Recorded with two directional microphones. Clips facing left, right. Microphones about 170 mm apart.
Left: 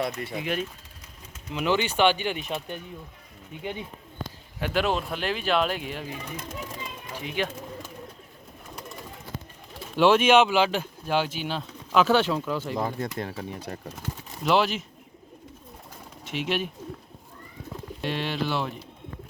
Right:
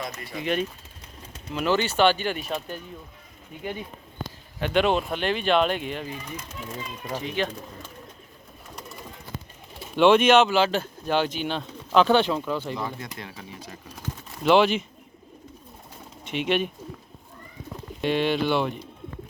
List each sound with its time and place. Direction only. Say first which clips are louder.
0.3 s speech: right 8 dB; 5° left (ahead or behind)
4.6 s speech: right 4 dB; 5° left (ahead or behind)
7.2 s speech: right 1 dB; 10° left (ahead or behind)
10.0 s speech: right 2 dB; 5° left (ahead or behind)
12.7 s speech: left 4 dB; 45° left (ahead or behind)
14.4 s speech: right 4 dB; centre (ahead or behind)
16.2 s speech: right 4 dB; 5° left (ahead or behind)
18.0 s speech: right 6 dB; centre (ahead or behind)